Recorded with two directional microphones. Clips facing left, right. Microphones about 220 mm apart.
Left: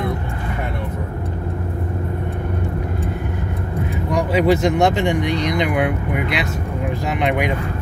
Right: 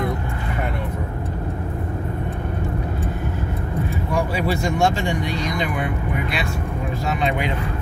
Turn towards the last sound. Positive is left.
turn(degrees=15)  # may be behind; listen again after turning